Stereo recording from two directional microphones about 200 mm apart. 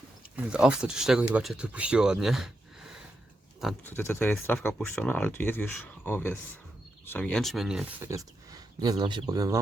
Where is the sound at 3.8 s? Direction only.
10° left (ahead or behind).